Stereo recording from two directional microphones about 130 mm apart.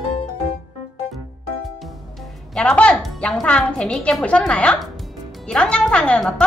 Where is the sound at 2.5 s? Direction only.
5° left (ahead or behind).